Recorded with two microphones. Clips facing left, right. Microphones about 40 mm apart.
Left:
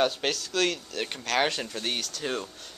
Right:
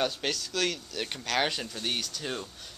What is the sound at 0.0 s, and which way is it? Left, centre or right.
Speech, centre.